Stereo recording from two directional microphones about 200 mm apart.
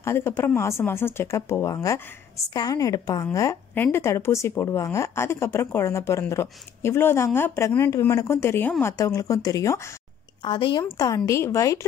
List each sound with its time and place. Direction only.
0.0 s speech: 10° left (ahead or behind)